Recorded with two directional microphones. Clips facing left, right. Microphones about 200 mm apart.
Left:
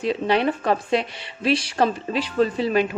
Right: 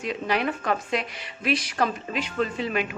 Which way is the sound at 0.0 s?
30° left (ahead or behind).